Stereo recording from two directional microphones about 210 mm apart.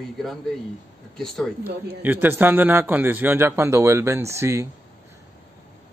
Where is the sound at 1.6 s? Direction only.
10° right (ahead or behind).